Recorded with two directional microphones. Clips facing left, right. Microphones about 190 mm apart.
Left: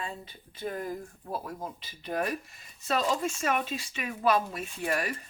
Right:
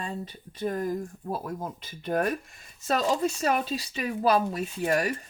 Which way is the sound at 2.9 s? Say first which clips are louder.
Right 3 dB; 40° right (ahead or behind).